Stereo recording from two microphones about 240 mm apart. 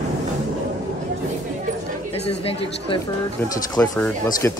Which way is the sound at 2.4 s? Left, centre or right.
Left.